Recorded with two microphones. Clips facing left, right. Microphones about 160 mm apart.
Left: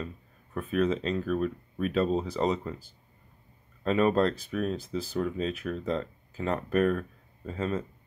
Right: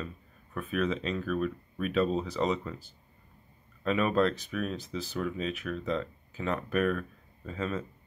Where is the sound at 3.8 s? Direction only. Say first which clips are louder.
Left 2 dB; 35° left (ahead or behind).